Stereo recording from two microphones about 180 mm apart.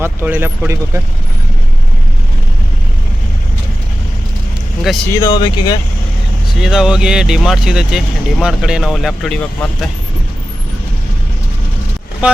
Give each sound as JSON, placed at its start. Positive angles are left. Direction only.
{"t": 0.0, "sound": "speech", "side_deg": -10}
{"t": 5.1, "sound": "speech", "side_deg": 20}
{"t": 6.6, "sound": "speech", "side_deg": -5}